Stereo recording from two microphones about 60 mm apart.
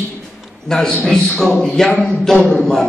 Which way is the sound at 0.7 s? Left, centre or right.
Centre.